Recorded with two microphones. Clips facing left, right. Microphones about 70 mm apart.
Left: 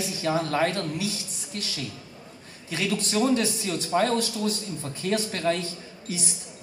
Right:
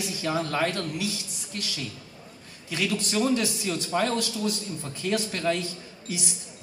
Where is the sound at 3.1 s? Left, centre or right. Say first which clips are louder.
Left 2 dB; left.